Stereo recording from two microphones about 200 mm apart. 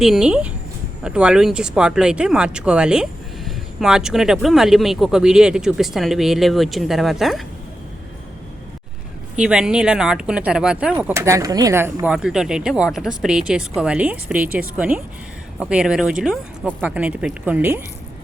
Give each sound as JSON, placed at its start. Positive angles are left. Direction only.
{"t": 0.0, "sound": "speech", "side_deg": 0}
{"t": 9.3, "sound": "speech", "side_deg": -5}